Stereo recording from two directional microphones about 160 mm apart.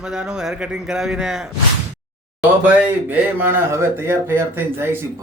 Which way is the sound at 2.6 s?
10° right (ahead or behind).